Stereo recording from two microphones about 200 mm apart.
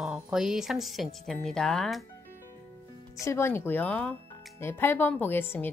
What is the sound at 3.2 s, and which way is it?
Speech, 15° left (ahead or behind).